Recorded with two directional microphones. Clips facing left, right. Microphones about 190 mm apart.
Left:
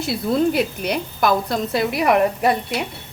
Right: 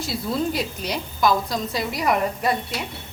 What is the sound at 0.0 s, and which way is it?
A woman's voice, 60° left (ahead or behind).